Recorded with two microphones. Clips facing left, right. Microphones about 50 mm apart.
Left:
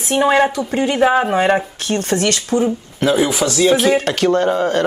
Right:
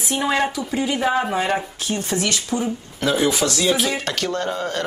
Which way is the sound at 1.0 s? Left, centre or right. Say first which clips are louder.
Left 8 dB; left.